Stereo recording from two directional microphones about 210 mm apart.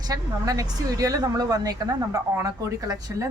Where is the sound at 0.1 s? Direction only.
15° right (ahead or behind).